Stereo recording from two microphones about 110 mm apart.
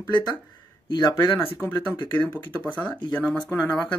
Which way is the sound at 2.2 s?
15° left (ahead or behind).